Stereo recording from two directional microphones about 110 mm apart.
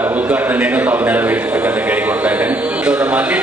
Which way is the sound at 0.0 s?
15° right (ahead or behind).